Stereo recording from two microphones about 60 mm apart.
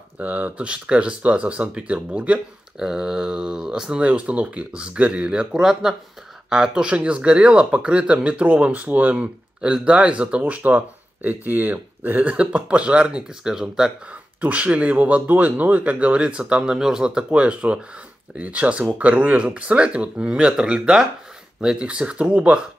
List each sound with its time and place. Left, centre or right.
0.2 s speech: right
2.8 s speech: centre
4.0 s speech: right
14.4 s speech: right